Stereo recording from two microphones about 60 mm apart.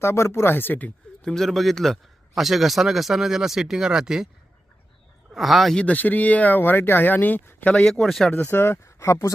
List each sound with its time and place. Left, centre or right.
0.0 s speech: left
1.2 s a man's voice: centre
1.5 s a man's voice: centre
5.3 s speech: centre
5.7 s speech: left
7.7 s speech: centre
8.4 s speech: left
8.8 s speech: left